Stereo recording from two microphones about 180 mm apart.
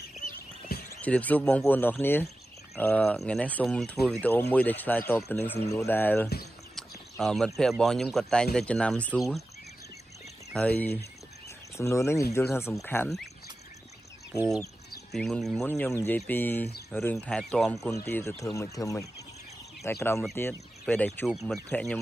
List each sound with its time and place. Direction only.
0.7 s a sound: 60° left (ahead or behind)
1.0 s speech: 10° left (ahead or behind)
6.7 s a sound: centre (ahead or behind)
7.8 s a man's voice: centre (ahead or behind)
10.5 s speech: 5° left (ahead or behind)
15.0 s a man's voice: 5° left (ahead or behind)